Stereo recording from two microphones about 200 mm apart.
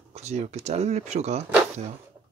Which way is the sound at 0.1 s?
35° right (ahead or behind).